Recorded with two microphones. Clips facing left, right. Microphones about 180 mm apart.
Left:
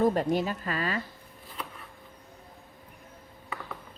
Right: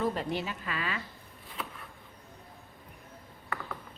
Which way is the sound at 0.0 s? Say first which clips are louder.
Left 7 dB; 45° left (ahead or behind).